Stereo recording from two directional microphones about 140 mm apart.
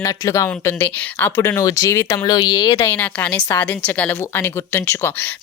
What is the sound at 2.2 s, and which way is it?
Speech, 30° left (ahead or behind).